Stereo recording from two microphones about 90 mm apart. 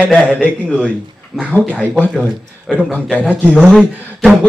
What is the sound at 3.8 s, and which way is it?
Speech, 20° right (ahead or behind).